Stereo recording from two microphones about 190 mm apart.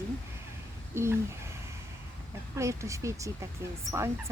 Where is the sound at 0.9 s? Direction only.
15° right (ahead or behind).